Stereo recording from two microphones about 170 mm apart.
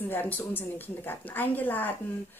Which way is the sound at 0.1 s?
10° left (ahead or behind).